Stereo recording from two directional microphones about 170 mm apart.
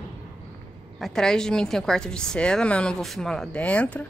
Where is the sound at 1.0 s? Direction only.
5° left (ahead or behind).